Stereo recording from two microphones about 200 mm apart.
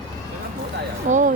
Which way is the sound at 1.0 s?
40° right (ahead or behind).